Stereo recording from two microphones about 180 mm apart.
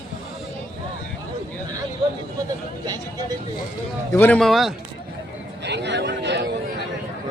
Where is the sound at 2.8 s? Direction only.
20° right (ahead or behind).